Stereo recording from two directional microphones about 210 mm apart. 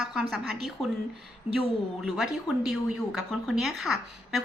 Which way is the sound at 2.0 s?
Centre (ahead or behind).